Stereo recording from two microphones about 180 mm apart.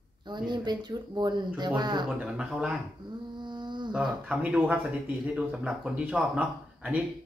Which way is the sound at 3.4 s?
25° right (ahead or behind).